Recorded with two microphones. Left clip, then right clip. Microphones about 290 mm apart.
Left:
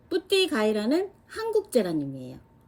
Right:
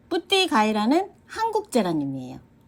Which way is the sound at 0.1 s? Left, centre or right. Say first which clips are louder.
Right 3 dB; right.